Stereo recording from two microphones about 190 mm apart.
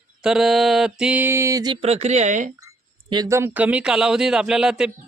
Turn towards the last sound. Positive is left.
turn(degrees=-5)  # may be behind; listen again after turning